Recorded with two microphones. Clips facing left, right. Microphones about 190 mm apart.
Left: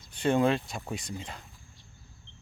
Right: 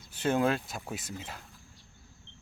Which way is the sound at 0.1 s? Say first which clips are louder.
Left 2 dB; 5° right (ahead or behind).